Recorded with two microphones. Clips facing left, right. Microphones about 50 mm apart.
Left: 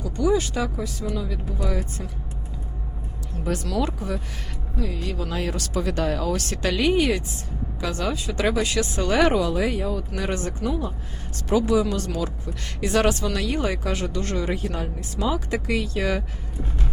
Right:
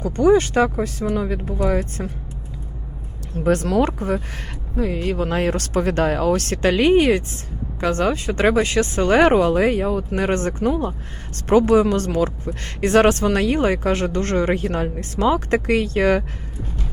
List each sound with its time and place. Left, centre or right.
0.0 s speech: right
3.3 s speech: right